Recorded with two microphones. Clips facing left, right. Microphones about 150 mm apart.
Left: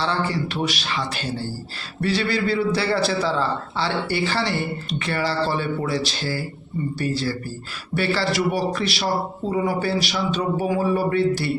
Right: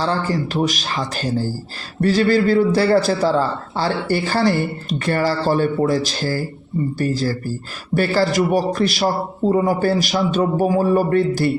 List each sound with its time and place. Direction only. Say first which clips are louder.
0.0 s a man's voice: right 3 dB; 45° right (ahead or behind)